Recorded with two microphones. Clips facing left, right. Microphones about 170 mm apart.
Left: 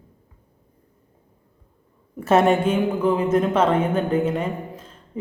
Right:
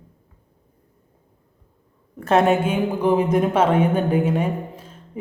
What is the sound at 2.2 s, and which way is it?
A woman's voice, centre (ahead or behind).